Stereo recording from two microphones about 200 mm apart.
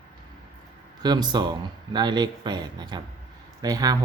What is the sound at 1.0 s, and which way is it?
Speech, 20° right (ahead or behind).